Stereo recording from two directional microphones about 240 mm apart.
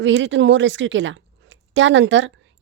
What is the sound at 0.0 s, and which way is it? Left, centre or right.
A woman's voice, right.